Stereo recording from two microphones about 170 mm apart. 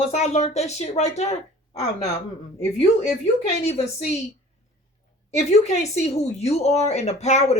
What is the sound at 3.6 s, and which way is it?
Speech, 40° left (ahead or behind).